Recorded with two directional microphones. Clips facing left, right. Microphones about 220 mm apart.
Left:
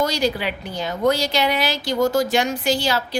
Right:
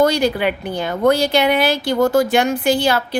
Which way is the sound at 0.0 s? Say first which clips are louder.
Right 6 dB; 55° right (ahead or behind).